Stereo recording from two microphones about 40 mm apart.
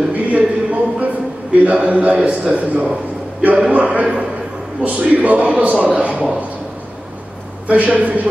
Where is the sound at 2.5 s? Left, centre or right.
Right.